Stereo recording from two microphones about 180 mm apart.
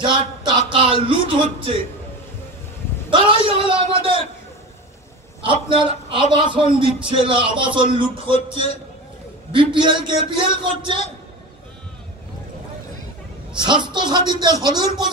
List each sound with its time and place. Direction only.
0.0 s speech: 25° right (ahead or behind)
3.1 s a man's voice: 30° right (ahead or behind)
5.4 s a man's voice: 30° right (ahead or behind)
13.6 s a man's voice: 25° right (ahead or behind)